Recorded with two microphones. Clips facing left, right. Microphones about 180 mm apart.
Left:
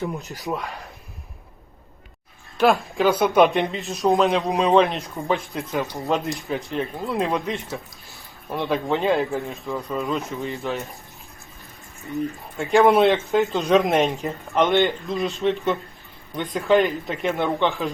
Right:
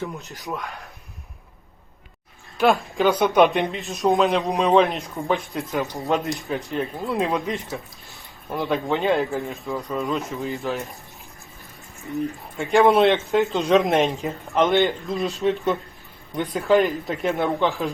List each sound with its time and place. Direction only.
0.4 s speech: centre (ahead or behind)
2.6 s speech: centre (ahead or behind)
12.0 s speech: centre (ahead or behind)